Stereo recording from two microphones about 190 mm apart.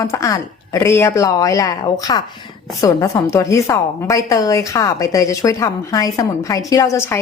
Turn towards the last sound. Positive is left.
turn(degrees=15)  # may be behind; listen again after turning